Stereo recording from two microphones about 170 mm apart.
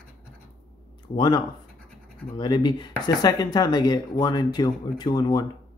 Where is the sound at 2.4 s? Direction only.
25° left (ahead or behind).